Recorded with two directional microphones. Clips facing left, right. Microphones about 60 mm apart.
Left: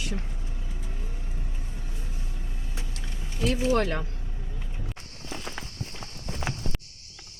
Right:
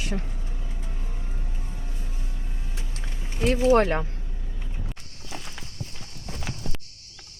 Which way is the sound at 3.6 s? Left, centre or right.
Right.